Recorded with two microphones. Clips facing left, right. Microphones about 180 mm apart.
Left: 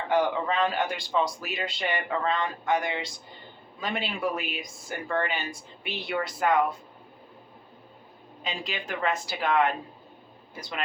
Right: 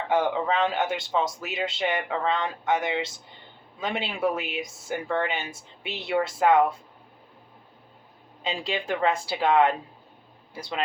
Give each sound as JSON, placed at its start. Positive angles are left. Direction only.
{"t": 0.1, "sound": "a man's voice", "side_deg": -25}
{"t": 8.4, "sound": "a man's voice", "side_deg": -30}